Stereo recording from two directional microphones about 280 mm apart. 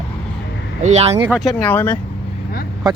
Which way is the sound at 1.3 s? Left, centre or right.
Centre.